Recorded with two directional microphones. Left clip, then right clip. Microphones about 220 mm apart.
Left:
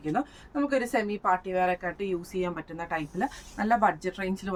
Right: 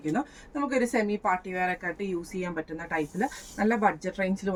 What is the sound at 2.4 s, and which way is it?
Speech, 20° left (ahead or behind).